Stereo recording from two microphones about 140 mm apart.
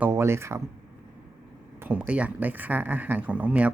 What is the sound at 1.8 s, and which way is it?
Speech, 10° right (ahead or behind).